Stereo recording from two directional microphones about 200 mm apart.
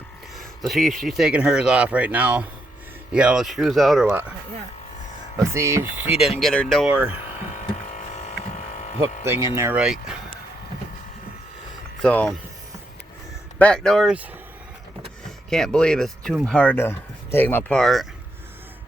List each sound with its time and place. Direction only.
0.3 s speech: centre (ahead or behind)
5.4 s speech: 15° right (ahead or behind)
6.4 s speech: 5° left (ahead or behind)
7.9 s a sound: 35° left (ahead or behind)
9.2 s speech: 15° right (ahead or behind)
12.0 s speech: 5° left (ahead or behind)
13.6 s speech: 5° left (ahead or behind)
15.4 s speech: centre (ahead or behind)